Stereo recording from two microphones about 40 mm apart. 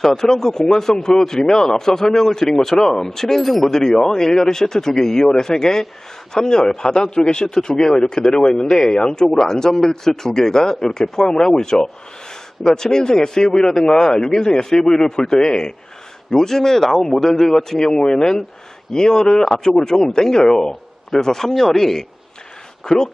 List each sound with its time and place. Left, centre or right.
0.0 s a man's voice: centre